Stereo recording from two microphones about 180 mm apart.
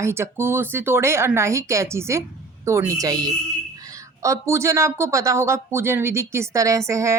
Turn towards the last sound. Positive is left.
turn(degrees=-15)  # may be behind; listen again after turning